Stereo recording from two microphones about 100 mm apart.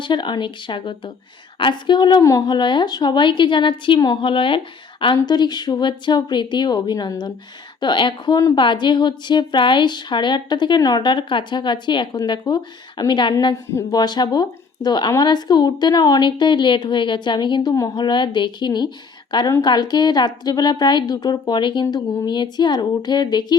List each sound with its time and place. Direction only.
0.0 s a woman's voice: 50° left (ahead or behind)